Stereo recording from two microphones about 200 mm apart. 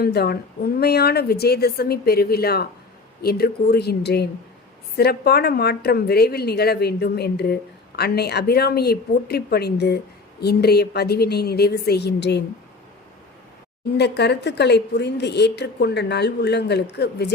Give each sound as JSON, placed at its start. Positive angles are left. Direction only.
{"t": 0.0, "sound": "a woman's voice", "side_deg": 50}
{"t": 13.9, "sound": "speech", "side_deg": 55}